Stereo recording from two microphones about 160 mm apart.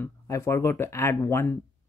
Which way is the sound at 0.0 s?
15° left (ahead or behind).